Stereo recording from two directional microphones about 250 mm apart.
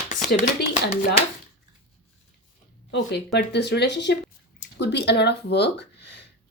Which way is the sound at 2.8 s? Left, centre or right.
Left.